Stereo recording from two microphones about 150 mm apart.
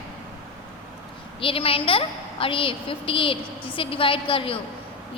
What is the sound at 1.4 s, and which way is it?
A woman's voice, 35° left (ahead or behind).